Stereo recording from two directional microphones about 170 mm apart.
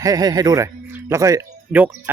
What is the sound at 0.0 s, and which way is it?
A man's voice, 20° right (ahead or behind).